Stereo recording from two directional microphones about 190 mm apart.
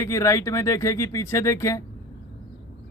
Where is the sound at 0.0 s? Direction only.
15° left (ahead or behind).